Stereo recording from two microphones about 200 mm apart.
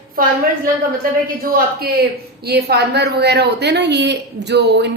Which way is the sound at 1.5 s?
50° right (ahead or behind).